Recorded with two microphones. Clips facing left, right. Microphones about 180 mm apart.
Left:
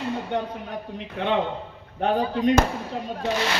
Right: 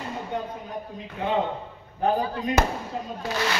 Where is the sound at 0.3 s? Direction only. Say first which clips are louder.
Left 3 dB; 70° left (ahead or behind).